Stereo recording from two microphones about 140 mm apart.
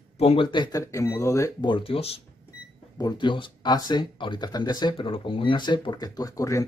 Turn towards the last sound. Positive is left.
turn(degrees=25)  # may be behind; listen again after turning